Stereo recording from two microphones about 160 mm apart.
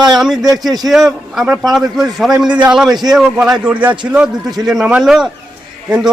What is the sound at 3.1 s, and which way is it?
A man's voice, 5° right (ahead or behind).